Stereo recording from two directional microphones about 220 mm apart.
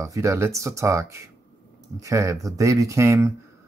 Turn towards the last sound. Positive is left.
turn(degrees=-15)  # may be behind; listen again after turning